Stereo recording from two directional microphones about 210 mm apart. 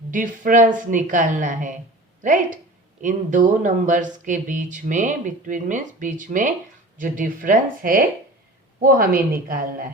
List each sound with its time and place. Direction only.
0.1 s a woman's voice: 40° right (ahead or behind)